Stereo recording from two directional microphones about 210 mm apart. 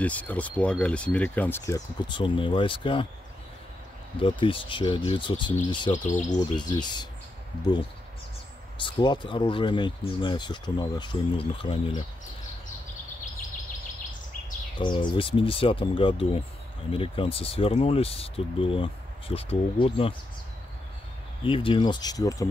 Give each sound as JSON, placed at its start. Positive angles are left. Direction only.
{"t": 0.0, "sound": "speech", "side_deg": 5}
{"t": 4.2, "sound": "speech", "side_deg": 25}
{"t": 5.9, "sound": "speech", "side_deg": 35}
{"t": 6.5, "sound": "speech", "side_deg": 20}
{"t": 8.7, "sound": "speech", "side_deg": 20}
{"t": 14.8, "sound": "speech", "side_deg": 20}
{"t": 21.5, "sound": "speech", "side_deg": 25}